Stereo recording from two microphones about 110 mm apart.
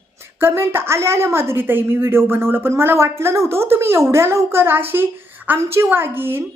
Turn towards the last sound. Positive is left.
turn(degrees=-20)  # may be behind; listen again after turning